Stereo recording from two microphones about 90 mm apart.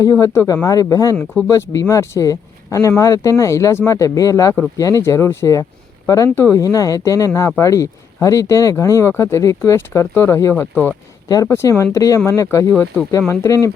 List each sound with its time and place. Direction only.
0.0 s speech: 35° left (ahead or behind)
6.3 s speech: 25° left (ahead or behind)
6.6 s speech: 40° left (ahead or behind)